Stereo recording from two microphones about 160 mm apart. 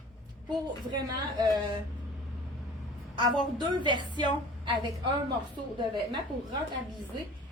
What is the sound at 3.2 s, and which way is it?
A woman's voice, 30° right (ahead or behind).